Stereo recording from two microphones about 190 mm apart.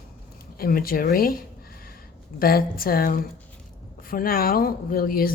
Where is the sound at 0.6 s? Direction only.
50° left (ahead or behind).